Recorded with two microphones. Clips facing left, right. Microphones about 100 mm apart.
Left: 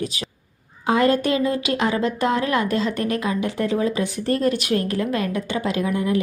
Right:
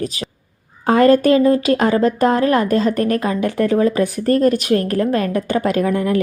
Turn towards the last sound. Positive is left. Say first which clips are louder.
# right 5 dB
turn(degrees=-55)  # may be behind; listen again after turning